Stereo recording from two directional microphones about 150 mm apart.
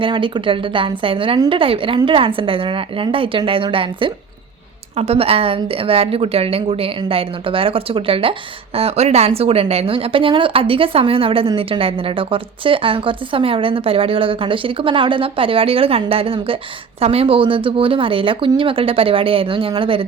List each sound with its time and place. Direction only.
0.0 s a woman's voice: 35° right (ahead or behind)